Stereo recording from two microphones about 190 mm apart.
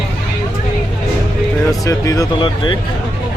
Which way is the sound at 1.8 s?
20° left (ahead or behind).